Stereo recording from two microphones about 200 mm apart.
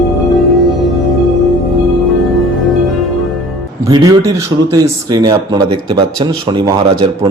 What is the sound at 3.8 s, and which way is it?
Speech, 15° right (ahead or behind).